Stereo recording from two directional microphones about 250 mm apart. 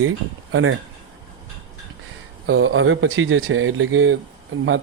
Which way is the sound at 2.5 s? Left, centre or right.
Right.